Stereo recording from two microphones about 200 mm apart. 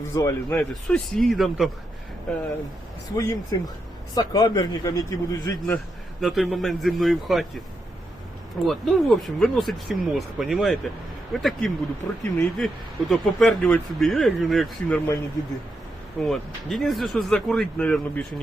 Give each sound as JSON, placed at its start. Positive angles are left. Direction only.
{"t": 0.1, "sound": "a man's voice", "side_deg": 15}
{"t": 0.7, "sound": "speech", "side_deg": 5}
{"t": 3.2, "sound": "a man's voice", "side_deg": 15}
{"t": 8.6, "sound": "a man's voice", "side_deg": 0}
{"t": 16.2, "sound": "speech", "side_deg": 0}